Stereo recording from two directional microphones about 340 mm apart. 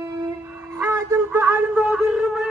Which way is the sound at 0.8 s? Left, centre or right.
Centre.